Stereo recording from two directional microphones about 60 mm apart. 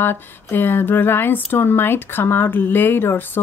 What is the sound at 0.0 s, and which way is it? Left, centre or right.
Speech, left.